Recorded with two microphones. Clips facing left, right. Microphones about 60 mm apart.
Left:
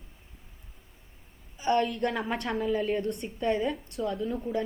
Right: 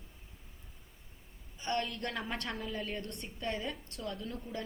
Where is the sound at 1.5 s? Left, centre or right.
Centre.